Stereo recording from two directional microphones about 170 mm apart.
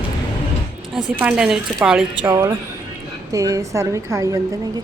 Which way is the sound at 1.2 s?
5° right (ahead or behind).